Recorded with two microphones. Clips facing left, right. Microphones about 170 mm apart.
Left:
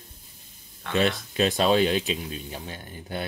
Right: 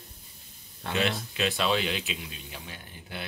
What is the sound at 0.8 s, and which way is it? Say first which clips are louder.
Speech: left 4 dB; 35° right (ahead or behind).